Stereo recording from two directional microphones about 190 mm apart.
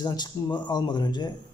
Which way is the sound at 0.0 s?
20° left (ahead or behind).